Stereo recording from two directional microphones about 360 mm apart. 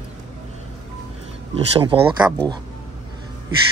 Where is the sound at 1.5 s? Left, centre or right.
Centre.